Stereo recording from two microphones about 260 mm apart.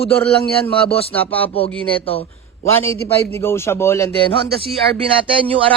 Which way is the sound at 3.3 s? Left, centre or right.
Centre.